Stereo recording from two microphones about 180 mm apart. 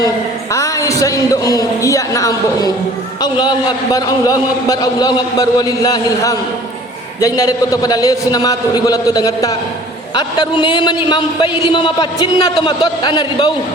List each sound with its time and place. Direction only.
0.5 s a man's voice: 15° left (ahead or behind)